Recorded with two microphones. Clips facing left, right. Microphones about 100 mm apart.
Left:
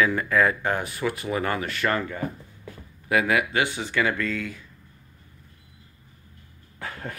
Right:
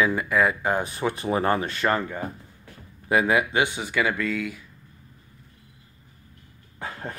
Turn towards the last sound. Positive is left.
turn(degrees=-20)  # may be behind; listen again after turning